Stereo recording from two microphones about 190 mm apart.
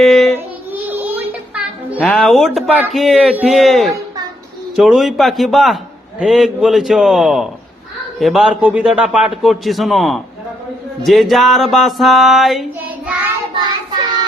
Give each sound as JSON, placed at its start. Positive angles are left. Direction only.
{"t": 0.0, "sound": "child singing", "side_deg": 0}
{"t": 0.9, "sound": "music", "side_deg": -10}
{"t": 2.6, "sound": "a man's voice", "side_deg": -5}
{"t": 13.5, "sound": "child singing", "side_deg": -20}